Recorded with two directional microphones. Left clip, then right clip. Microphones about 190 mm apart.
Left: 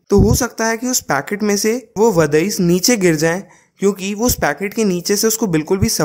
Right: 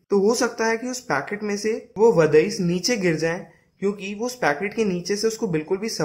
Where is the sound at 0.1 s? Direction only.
45° left (ahead or behind).